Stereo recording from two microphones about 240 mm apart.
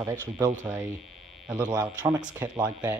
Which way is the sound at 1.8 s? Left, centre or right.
Centre.